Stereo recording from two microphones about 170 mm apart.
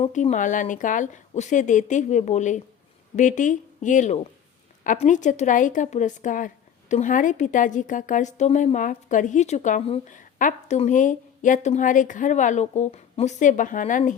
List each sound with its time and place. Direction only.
0.0 s a woman's voice: 45° left (ahead or behind)